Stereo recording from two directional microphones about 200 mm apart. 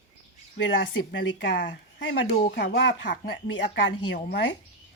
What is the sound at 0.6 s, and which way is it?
Speech, 65° left (ahead or behind).